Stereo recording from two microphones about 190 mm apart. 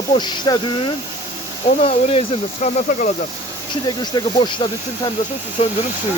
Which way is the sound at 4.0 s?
25° left (ahead or behind).